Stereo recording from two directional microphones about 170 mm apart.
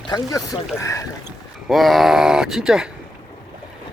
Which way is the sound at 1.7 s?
Centre (ahead or behind).